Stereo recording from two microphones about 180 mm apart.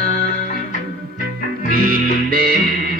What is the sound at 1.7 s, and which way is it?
Music, 50° right (ahead or behind).